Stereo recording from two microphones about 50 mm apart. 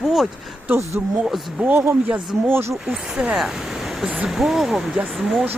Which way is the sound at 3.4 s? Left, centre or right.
Centre.